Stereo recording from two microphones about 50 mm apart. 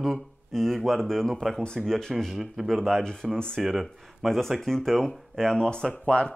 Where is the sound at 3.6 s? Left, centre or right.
Centre.